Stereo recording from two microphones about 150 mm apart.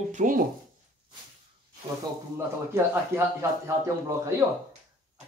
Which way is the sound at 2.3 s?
20° right (ahead or behind).